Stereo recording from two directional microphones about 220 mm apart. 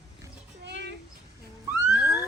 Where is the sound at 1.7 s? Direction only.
5° right (ahead or behind).